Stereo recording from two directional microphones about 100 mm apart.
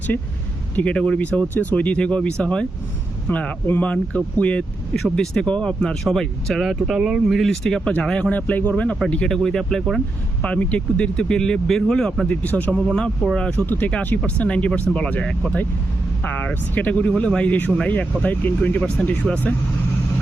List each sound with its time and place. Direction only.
0.8 s speech: 10° left (ahead or behind)
10.4 s speech: 15° left (ahead or behind)
12.4 s speech: 15° left (ahead or behind)